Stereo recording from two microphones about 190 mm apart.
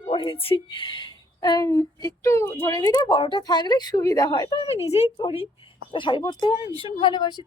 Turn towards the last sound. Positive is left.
turn(degrees=25)  # may be behind; listen again after turning